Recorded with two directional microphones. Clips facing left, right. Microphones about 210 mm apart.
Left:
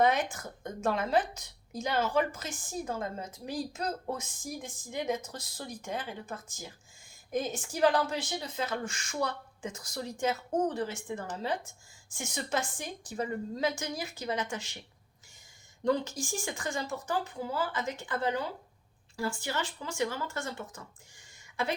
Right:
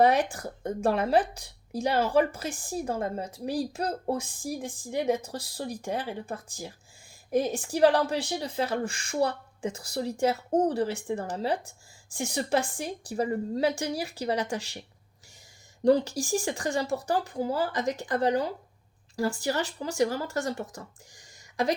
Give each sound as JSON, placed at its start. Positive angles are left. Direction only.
{"t": 0.0, "sound": "a woman's voice", "side_deg": -35}
{"t": 15.8, "sound": "a woman's voice", "side_deg": -35}